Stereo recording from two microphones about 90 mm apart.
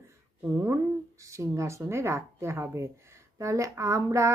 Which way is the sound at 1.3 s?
35° right (ahead or behind).